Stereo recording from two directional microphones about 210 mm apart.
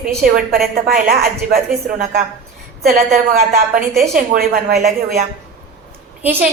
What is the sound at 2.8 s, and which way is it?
A woman's voice, 45° right (ahead or behind).